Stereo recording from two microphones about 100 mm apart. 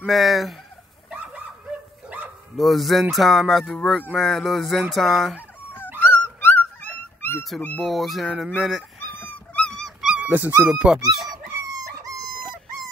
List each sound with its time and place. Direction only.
0.0 s speech: centre (ahead or behind)
1.1 s dog: 10° right (ahead or behind)
2.5 s speech: centre (ahead or behind)
5.9 s dog: 20° left (ahead or behind)
7.8 s speech: centre (ahead or behind)
9.2 s dog: 15° left (ahead or behind)
10.0 s dog: 15° right (ahead or behind)
10.7 s speech: 10° right (ahead or behind)
11.7 s dog: 35° right (ahead or behind)